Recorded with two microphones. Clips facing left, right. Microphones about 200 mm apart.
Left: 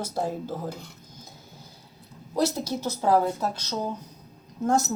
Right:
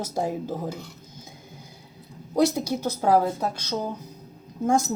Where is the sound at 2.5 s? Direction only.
15° right (ahead or behind).